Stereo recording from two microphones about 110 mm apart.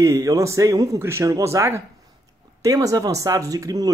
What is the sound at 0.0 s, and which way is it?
Speech, 30° right (ahead or behind).